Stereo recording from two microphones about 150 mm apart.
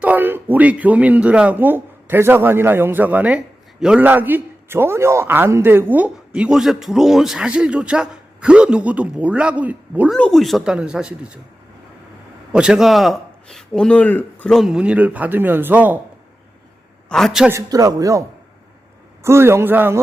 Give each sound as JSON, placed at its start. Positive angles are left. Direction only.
{"t": 0.0, "sound": "speech", "side_deg": -10}
{"t": 10.1, "sound": "speech", "side_deg": 5}
{"t": 12.5, "sound": "speech", "side_deg": -5}
{"t": 17.1, "sound": "speech", "side_deg": 0}
{"t": 17.5, "sound": "speech", "side_deg": -25}